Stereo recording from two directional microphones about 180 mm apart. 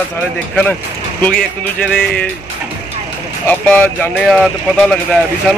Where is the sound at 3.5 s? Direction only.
10° left (ahead or behind).